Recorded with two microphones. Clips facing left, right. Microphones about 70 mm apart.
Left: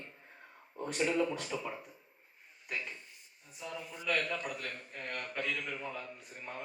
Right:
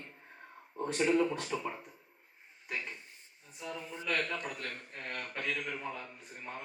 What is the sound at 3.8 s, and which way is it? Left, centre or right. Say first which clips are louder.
Speech: right 2 dB; right.